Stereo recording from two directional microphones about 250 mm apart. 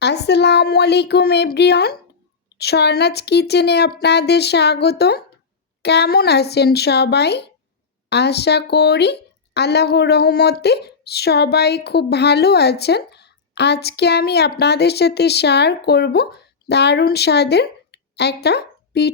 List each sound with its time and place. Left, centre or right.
0.0 s a woman's voice: left